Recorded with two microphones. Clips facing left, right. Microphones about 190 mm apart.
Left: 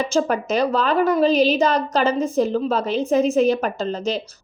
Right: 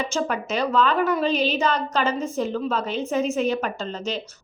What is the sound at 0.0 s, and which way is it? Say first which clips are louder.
A woman's voice: left 5 dB; 40° left (ahead or behind).